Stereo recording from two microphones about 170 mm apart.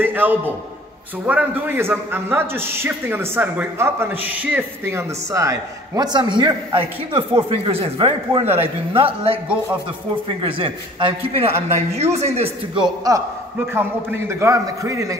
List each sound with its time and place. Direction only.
0.0 s a man's voice: 10° right (ahead or behind); by 9.4 s 35° right (ahead or behind)
10.4 s a man's voice: 30° right (ahead or behind)